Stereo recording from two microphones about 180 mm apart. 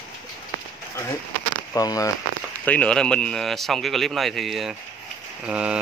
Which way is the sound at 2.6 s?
5° left (ahead or behind).